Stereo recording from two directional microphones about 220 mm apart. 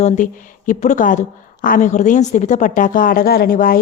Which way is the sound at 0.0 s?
35° left (ahead or behind).